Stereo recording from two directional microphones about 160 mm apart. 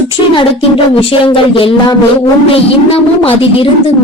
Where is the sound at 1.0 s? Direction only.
35° left (ahead or behind).